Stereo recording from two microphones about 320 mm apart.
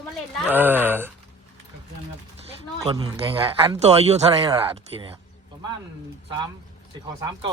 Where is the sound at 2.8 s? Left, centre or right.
Centre.